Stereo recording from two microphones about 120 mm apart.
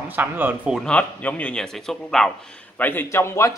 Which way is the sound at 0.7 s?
10° left (ahead or behind).